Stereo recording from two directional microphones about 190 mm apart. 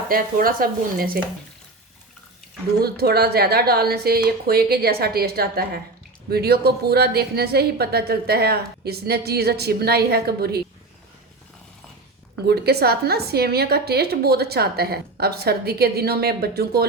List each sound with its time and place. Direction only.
0.1 s speech: 50° right (ahead or behind)
2.8 s a woman's voice: 55° right (ahead or behind)
12.5 s a woman's voice: 55° right (ahead or behind)